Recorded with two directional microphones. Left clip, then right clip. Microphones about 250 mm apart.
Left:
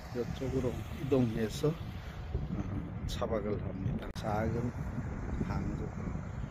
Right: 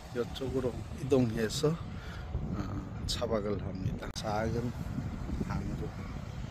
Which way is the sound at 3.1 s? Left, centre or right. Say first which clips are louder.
Right 2 dB; centre.